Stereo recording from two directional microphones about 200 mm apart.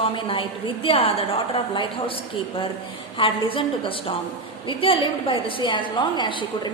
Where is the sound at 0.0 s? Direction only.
25° left (ahead or behind).